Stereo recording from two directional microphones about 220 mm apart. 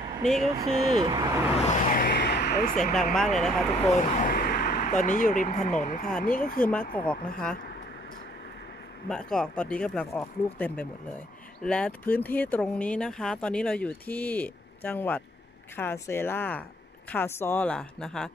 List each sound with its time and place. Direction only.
0.7 s speech: 25° right (ahead or behind)
1.7 s vehicle: 40° left (ahead or behind)
2.6 s speech: 35° left (ahead or behind)
2.9 s speech: centre (ahead or behind)
3.8 s speech: 30° left (ahead or behind)
6.6 s speech: 5° left (ahead or behind)
9.1 s speech: 5° left (ahead or behind)